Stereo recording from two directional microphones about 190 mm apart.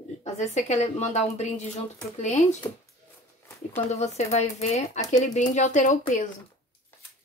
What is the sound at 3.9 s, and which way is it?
A woman's voice, 35° left (ahead or behind).